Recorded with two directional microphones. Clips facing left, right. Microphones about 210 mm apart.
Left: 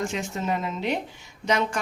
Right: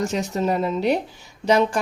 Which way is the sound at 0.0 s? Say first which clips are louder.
Right 6 dB; 40° right (ahead or behind).